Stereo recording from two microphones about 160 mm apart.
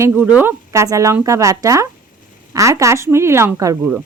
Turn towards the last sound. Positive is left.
turn(degrees=-20)  # may be behind; listen again after turning